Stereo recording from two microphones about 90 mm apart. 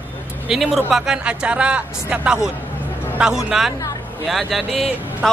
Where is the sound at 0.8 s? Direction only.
10° right (ahead or behind).